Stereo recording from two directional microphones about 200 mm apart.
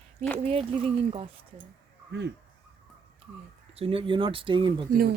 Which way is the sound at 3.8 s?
25° right (ahead or behind).